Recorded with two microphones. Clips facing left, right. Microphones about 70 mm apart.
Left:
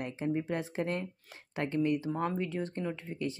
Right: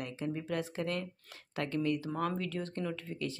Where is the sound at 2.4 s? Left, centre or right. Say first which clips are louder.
Left 2 dB; left.